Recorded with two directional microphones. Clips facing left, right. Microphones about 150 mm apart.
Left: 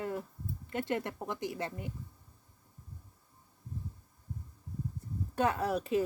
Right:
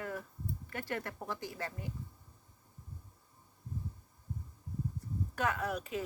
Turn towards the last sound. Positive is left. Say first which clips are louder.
# left 6 dB
turn(degrees=30)  # may be behind; listen again after turning